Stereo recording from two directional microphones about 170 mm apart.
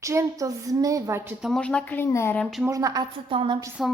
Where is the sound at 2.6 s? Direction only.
20° right (ahead or behind).